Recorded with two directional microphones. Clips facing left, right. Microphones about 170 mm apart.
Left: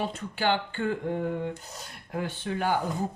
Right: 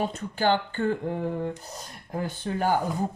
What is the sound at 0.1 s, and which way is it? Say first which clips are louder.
Speech: right 3 dB; 40° right (ahead or behind).